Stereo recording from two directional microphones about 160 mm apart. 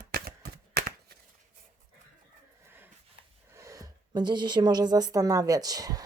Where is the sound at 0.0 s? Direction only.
70° right (ahead or behind).